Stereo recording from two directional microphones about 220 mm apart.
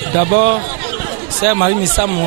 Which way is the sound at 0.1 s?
15° right (ahead or behind).